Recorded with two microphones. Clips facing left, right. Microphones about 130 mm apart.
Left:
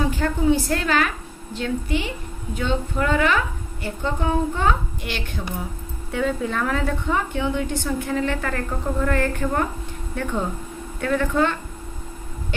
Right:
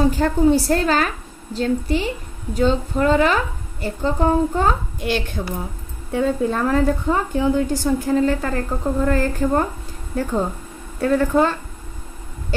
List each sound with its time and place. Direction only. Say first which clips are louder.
0.1 s a woman's voice: right 4 dB; 40° right (ahead or behind)
6.1 s a woman's voice: right 4 dB; 35° right (ahead or behind)